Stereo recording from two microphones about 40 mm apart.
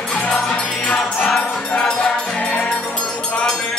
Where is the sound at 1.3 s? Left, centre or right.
Centre.